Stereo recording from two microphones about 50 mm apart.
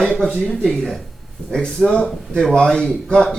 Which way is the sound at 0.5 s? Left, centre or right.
Centre.